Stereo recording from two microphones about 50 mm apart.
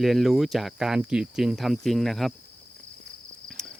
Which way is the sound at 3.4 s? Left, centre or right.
Centre.